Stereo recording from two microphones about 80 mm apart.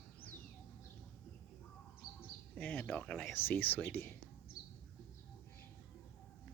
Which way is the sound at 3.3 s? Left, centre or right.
Left.